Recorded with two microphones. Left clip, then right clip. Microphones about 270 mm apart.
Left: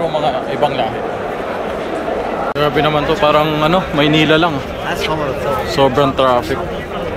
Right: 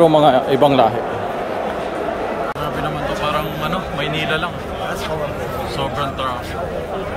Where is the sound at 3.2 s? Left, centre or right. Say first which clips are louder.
Left 9 dB; centre.